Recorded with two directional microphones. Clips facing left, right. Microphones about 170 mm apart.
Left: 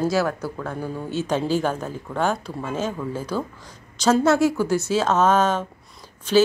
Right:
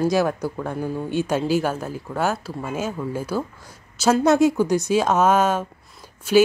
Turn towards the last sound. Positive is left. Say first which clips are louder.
# right 2 dB
turn(degrees=-10)  # may be behind; listen again after turning